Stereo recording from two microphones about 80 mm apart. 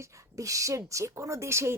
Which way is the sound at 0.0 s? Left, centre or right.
Right.